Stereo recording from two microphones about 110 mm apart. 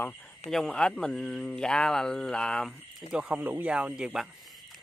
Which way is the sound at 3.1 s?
10° right (ahead or behind).